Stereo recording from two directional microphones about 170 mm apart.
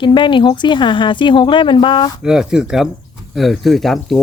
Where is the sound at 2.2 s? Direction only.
5° right (ahead or behind).